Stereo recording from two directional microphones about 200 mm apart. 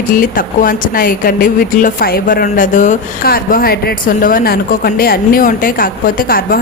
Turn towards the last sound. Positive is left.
turn(degrees=45)  # may be behind; listen again after turning